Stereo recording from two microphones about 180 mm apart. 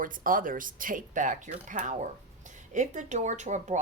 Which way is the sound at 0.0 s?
50° right (ahead or behind).